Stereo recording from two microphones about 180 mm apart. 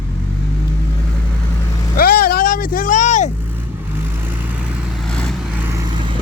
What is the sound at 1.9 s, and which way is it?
Vehicle, 55° left (ahead or behind).